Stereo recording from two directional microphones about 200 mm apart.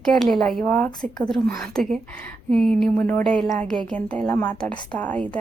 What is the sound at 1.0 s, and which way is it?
Speech, 20° left (ahead or behind).